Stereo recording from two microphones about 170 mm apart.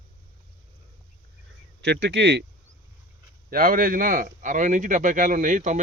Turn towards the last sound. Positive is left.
turn(degrees=-45)  # may be behind; listen again after turning